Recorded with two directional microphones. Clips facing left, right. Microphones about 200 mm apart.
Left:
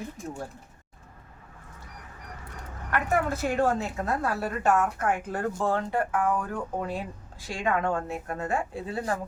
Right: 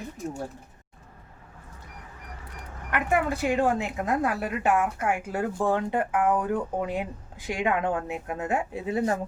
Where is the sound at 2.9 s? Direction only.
15° right (ahead or behind).